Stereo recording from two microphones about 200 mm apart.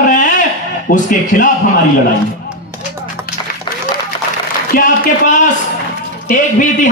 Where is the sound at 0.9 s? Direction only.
40° left (ahead or behind).